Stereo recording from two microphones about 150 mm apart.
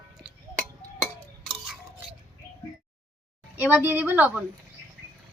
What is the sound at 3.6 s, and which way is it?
Speech, 10° right (ahead or behind).